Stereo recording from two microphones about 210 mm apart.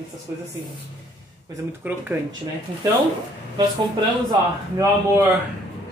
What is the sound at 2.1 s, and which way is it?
Speech, 10° right (ahead or behind).